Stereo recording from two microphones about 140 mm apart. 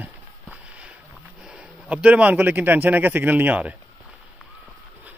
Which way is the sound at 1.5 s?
10° right (ahead or behind).